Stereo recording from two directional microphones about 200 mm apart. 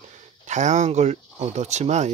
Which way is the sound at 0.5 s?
35° right (ahead or behind).